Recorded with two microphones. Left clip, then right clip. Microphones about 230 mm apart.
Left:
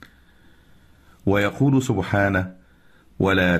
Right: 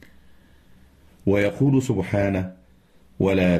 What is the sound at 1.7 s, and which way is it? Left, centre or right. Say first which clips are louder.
Speech: left 1 dB; centre.